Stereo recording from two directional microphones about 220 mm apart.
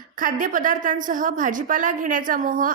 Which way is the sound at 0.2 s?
40° right (ahead or behind).